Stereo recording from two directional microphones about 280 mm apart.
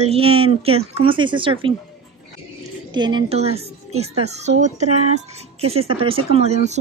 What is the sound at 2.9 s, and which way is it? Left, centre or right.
Speech, centre.